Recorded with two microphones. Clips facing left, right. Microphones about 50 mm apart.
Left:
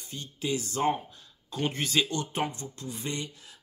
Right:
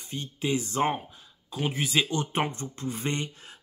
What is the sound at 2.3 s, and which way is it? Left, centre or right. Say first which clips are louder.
Speech: right 3 dB; right.